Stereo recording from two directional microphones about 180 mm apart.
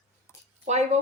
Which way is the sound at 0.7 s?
40° right (ahead or behind).